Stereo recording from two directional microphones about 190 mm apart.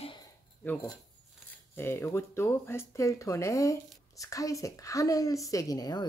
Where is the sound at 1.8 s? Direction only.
10° left (ahead or behind).